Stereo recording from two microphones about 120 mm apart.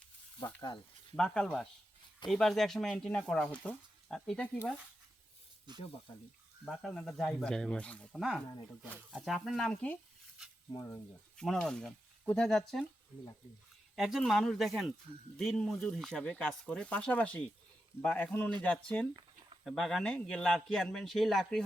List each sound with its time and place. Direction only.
0.3 s speech: 40° left (ahead or behind)
1.1 s a man's voice: 5° left (ahead or behind)
5.7 s speech: 35° right (ahead or behind)
6.7 s a man's voice: centre (ahead or behind)
9.1 s a man's voice: centre (ahead or behind)
10.8 s speech: 20° left (ahead or behind)
11.3 s a man's voice: centre (ahead or behind)
13.9 s a man's voice: centre (ahead or behind)